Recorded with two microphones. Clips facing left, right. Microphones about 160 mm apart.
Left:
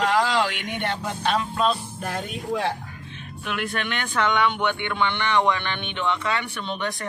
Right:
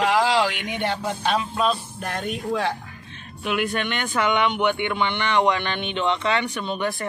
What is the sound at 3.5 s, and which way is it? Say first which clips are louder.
Speech: right 4 dB; 5° right (ahead or behind).